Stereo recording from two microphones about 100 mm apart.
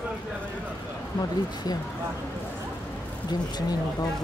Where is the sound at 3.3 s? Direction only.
40° left (ahead or behind).